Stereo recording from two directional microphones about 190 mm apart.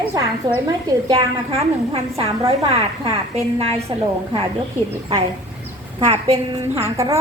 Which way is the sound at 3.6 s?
30° right (ahead or behind).